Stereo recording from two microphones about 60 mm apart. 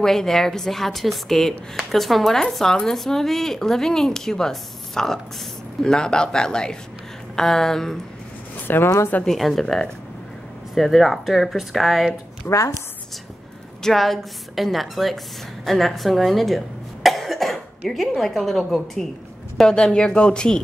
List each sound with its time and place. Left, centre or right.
0.0 s a woman's voice: centre
8.6 s a woman's voice: left
9.2 s speech: centre
12.4 s a woman's voice: left
13.8 s a woman's voice: centre